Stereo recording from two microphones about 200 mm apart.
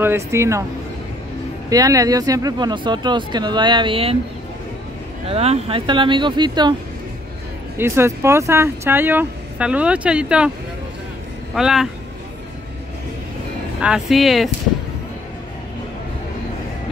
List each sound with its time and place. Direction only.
0.0 s speech: 10° right (ahead or behind)
1.7 s speech: 15° right (ahead or behind)
5.3 s speech: 30° right (ahead or behind)
7.7 s speech: 10° right (ahead or behind)
11.5 s speech: centre (ahead or behind)
13.7 s speech: 5° right (ahead or behind)